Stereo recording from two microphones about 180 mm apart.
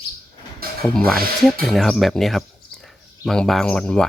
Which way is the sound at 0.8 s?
5° left (ahead or behind).